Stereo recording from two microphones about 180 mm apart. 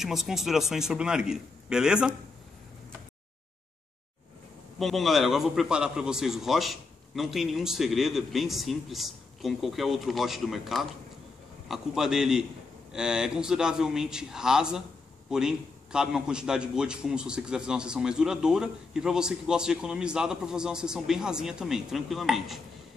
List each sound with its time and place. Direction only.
0.0 s a man's voice: centre (ahead or behind)
4.7 s a man's voice: centre (ahead or behind)